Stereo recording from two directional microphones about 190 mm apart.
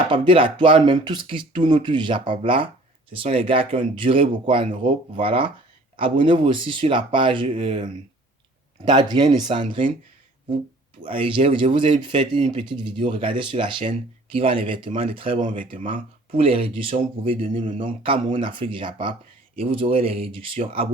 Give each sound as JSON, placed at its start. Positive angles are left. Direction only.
{"t": 0.1, "sound": "speech", "side_deg": -25}
{"t": 11.0, "sound": "speech", "side_deg": -25}
{"t": 15.4, "sound": "speech", "side_deg": -45}
{"t": 16.4, "sound": "speech", "side_deg": -30}